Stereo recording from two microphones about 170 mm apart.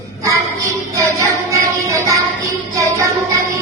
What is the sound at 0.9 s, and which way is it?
Music, 15° right (ahead or behind).